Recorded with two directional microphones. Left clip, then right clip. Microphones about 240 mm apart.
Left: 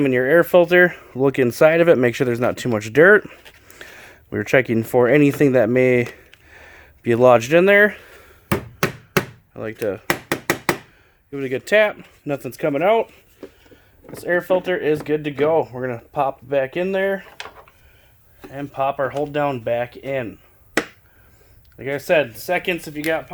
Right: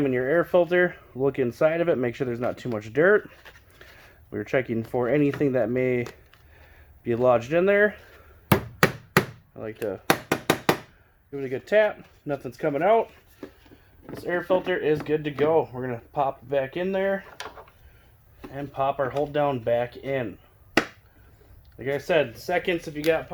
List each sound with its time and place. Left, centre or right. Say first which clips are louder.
0.0 s speech: left 7 dB; left
6.5 s a sound: left 15 dB; left
9.6 s speech: left 6 dB; left
11.3 s speech: left 6 dB; left
14.1 s speech: left 5 dB; left
18.5 s speech: left 4 dB; left
21.8 s speech: left 5 dB; left